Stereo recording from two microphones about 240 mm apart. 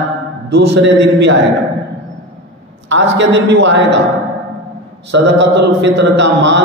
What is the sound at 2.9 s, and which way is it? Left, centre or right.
Mantra, right.